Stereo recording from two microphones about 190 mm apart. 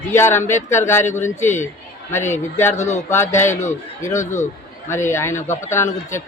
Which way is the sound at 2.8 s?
40° left (ahead or behind).